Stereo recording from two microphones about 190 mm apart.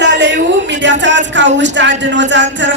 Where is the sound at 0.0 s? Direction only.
70° right (ahead or behind).